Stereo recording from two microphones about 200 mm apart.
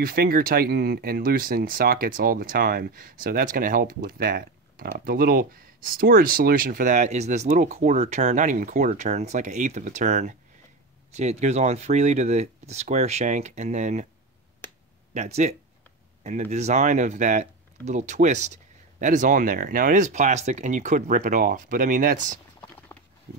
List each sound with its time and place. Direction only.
0.0 s speech: 45° right (ahead or behind)
15.1 s speech: 35° right (ahead or behind)